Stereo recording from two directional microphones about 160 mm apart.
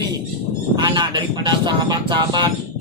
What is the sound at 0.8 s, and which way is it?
A man's voice, 30° right (ahead or behind).